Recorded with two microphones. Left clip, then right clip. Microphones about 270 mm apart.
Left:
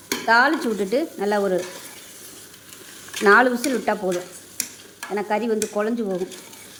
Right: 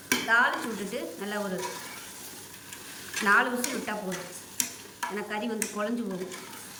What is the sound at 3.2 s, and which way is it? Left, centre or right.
Speech, centre.